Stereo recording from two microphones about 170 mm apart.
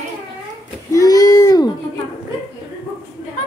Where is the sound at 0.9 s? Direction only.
20° left (ahead or behind).